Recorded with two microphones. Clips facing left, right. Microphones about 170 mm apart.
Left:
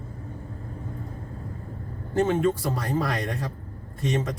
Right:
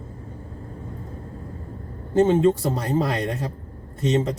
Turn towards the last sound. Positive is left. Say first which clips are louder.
# right 5 dB
turn(degrees=-25)  # may be behind; listen again after turning